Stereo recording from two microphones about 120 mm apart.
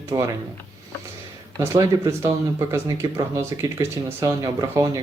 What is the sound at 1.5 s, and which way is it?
Speech, 25° right (ahead or behind).